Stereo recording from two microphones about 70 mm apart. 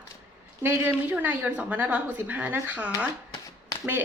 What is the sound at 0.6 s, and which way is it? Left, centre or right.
A woman's voice, right.